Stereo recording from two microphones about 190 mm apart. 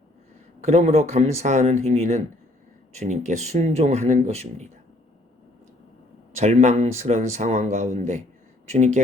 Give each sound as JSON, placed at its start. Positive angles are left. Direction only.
{"t": 0.6, "sound": "speech", "side_deg": -35}
{"t": 6.3, "sound": "speech", "side_deg": -35}